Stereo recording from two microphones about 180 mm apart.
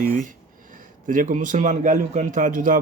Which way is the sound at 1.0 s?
45° right (ahead or behind).